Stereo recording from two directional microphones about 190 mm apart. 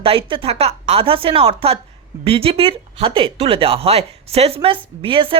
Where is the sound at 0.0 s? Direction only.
30° right (ahead or behind).